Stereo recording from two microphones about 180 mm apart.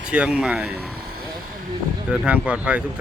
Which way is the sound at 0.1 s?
5° right (ahead or behind).